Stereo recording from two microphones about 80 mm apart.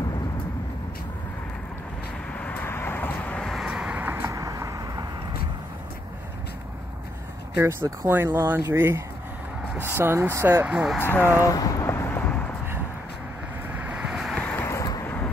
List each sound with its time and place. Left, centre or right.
2.3 s vehicle: centre
3.6 s a sound: centre
4.0 s vehicle: right
4.3 s vehicle: right
7.5 s speech: right
10.6 s speech: centre
11.0 s speech: left
11.3 s speech: left
11.9 s a sound: left
13.7 s vehicle: centre
14.1 s vehicle: centre
14.6 s vehicle: left
15.0 s vehicle: left